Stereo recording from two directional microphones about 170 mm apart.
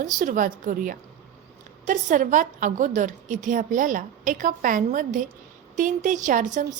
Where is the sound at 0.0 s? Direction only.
50° right (ahead or behind).